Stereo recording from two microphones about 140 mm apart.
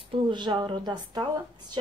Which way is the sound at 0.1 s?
35° right (ahead or behind).